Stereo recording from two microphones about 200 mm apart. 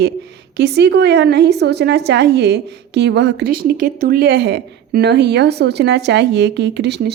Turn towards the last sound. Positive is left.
turn(degrees=-60)  # may be behind; listen again after turning